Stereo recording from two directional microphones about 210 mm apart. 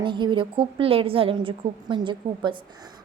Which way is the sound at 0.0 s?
25° right (ahead or behind).